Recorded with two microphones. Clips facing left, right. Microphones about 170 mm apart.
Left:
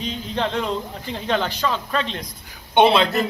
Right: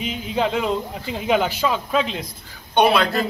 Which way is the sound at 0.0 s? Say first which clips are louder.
Right 2 dB; 5° right (ahead or behind).